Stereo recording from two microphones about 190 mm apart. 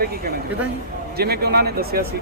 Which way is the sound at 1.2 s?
55° right (ahead or behind).